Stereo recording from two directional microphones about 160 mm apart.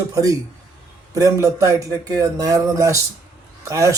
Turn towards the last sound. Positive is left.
turn(degrees=-20)  # may be behind; listen again after turning